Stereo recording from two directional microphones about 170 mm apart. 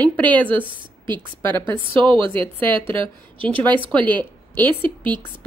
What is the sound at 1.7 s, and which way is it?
Speech, 30° right (ahead or behind).